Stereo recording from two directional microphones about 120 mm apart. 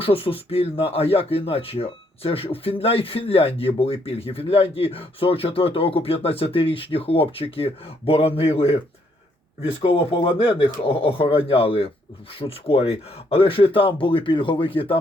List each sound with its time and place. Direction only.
0.0 s speech: 50° left (ahead or behind)